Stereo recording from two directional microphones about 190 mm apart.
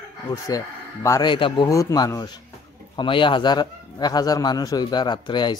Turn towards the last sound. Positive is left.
turn(degrees=25)  # may be behind; listen again after turning